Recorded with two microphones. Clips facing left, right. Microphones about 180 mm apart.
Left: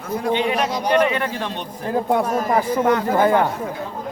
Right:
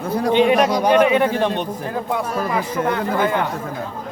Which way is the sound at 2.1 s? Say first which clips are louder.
Left 3 dB; 45° left (ahead or behind).